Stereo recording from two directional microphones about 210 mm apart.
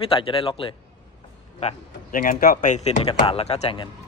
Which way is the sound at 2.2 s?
40° left (ahead or behind).